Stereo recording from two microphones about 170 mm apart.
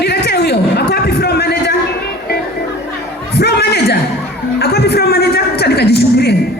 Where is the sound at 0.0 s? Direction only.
75° left (ahead or behind).